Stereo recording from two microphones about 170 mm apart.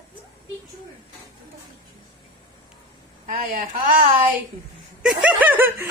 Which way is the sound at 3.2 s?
55° right (ahead or behind).